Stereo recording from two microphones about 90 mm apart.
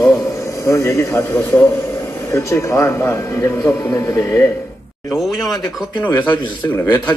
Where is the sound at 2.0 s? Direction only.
35° left (ahead or behind).